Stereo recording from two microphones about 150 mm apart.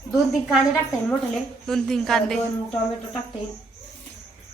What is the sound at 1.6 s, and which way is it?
Speech, 5° left (ahead or behind).